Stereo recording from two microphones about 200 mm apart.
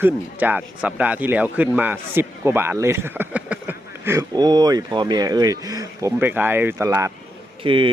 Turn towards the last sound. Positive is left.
turn(degrees=-25)  # may be behind; listen again after turning